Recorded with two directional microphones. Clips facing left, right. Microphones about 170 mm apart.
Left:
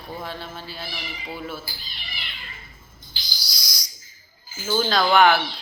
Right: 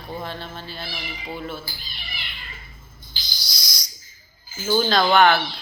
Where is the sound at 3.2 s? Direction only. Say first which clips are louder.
Even; 10° left (ahead or behind).